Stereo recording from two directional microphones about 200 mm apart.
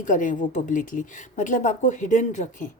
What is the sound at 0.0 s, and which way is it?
A woman's voice, 40° left (ahead or behind).